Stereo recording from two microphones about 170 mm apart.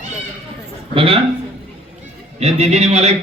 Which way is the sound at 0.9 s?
35° right (ahead or behind).